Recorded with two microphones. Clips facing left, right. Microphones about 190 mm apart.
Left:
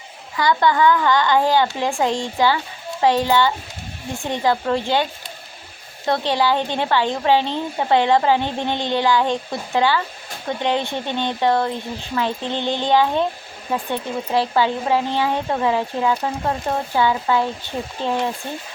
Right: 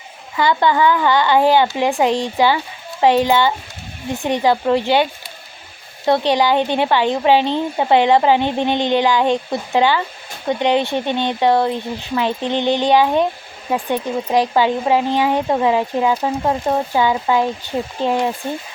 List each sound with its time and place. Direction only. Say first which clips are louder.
0.3 s speech: right 2 dB; 20° right (ahead or behind)
6.1 s speech: right 4 dB; 15° right (ahead or behind)